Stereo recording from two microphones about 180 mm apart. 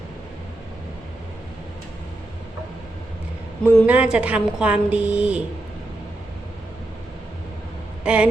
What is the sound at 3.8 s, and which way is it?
A woman's voice, 10° right (ahead or behind).